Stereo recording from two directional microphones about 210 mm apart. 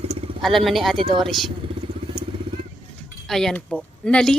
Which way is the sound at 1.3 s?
Centre (ahead or behind).